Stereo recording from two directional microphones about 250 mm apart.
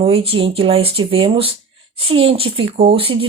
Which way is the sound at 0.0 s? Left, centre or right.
Right.